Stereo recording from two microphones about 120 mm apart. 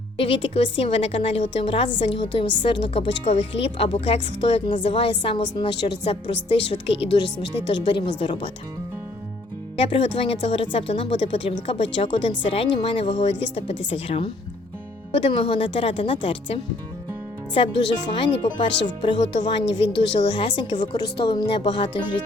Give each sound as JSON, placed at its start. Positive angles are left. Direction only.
{"t": 0.2, "sound": "a woman's voice", "side_deg": 50}
{"t": 7.7, "sound": "speech", "side_deg": 40}
{"t": 9.9, "sound": "a woman's voice", "side_deg": 50}
{"t": 20.3, "sound": "a woman's voice", "side_deg": 40}
{"t": 21.3, "sound": "speech", "side_deg": 40}